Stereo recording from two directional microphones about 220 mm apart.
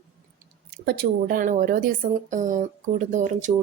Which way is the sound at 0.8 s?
45° right (ahead or behind).